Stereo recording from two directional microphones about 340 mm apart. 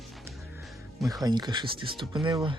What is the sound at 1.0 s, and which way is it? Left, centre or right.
Speech, centre.